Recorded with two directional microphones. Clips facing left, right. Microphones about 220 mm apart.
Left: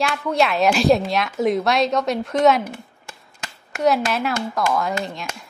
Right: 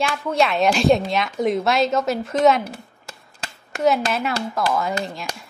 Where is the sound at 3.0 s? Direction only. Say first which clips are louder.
Right 1 dB; 35° right (ahead or behind).